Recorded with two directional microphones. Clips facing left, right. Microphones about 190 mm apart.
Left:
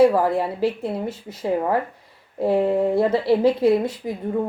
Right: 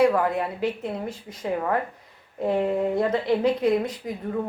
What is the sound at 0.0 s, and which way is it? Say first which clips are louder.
A woman's voice: left 4 dB; 30° left (ahead or behind).